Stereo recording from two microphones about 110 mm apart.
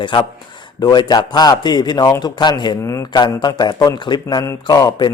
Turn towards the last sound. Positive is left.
turn(degrees=35)  # may be behind; listen again after turning